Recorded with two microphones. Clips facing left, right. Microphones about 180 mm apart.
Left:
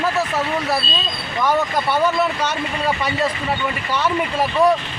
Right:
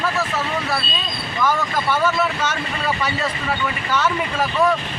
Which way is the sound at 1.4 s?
15° left (ahead or behind).